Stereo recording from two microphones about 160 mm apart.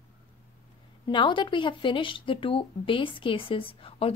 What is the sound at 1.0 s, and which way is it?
Speech, 30° left (ahead or behind).